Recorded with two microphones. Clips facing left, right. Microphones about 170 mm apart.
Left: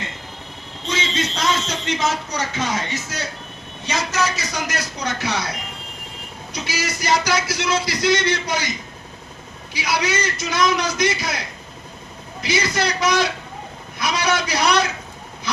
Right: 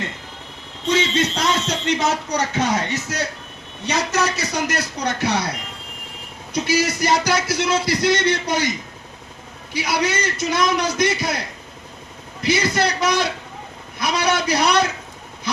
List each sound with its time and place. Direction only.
0.9 s a man's voice: 65° right (ahead or behind)
6.5 s a man's voice: 55° right (ahead or behind)
9.7 s a man's voice: 55° right (ahead or behind)